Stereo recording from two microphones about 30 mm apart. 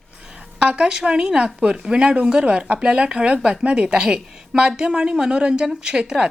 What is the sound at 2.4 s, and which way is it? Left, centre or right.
Speech, right.